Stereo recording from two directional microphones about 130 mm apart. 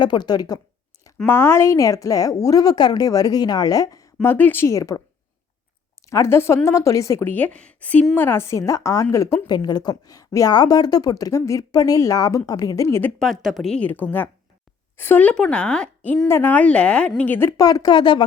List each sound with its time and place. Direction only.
0.0 s speech: 35° left (ahead or behind)
1.2 s a woman's voice: 20° left (ahead or behind)
6.1 s a woman's voice: 20° left (ahead or behind)
13.1 s a woman's voice: centre (ahead or behind)
16.2 s a woman's voice: 20° left (ahead or behind)
17.6 s speech: 30° left (ahead or behind)